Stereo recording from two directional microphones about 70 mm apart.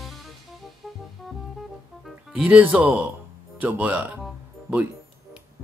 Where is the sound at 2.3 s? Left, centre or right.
Right.